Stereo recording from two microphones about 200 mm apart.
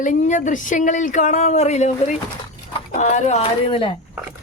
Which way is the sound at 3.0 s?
35° left (ahead or behind).